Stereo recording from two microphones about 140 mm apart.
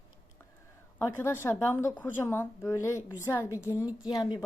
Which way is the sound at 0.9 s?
15° left (ahead or behind).